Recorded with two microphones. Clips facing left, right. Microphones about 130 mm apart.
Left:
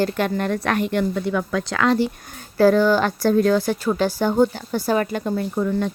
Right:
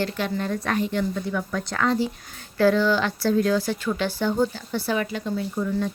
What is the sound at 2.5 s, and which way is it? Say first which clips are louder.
Speech: left 4 dB; 45° left (ahead or behind).